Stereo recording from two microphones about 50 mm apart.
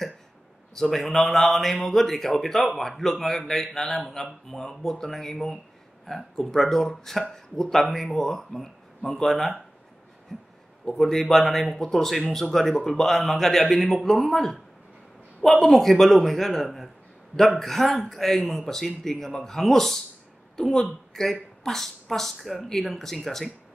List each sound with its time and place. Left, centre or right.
0.7 s a man's voice: centre
15.6 s a man's voice: centre
16.6 s a man's voice: centre